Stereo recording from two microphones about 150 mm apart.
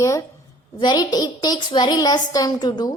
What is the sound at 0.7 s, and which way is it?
A woman's voice, 30° left (ahead or behind).